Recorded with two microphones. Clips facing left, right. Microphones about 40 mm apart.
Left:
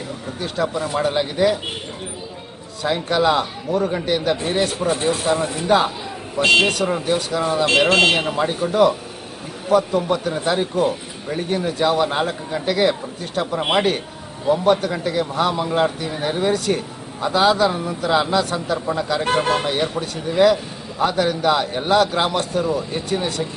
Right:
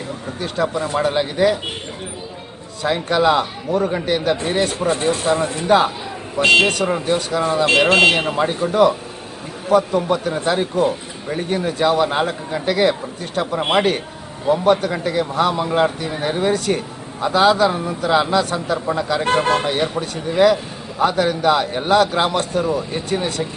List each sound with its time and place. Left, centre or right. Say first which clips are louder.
0.3 s a man's voice: right 2 dB; centre
2.8 s a man's voice: right 2 dB; centre
7.9 s a man's voice: right 2 dB; centre